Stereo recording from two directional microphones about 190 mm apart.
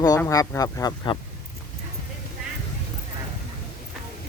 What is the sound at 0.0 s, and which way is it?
Speech, 20° left (ahead or behind).